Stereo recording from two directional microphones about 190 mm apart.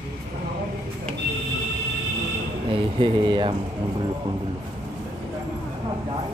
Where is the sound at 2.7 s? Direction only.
25° right (ahead or behind).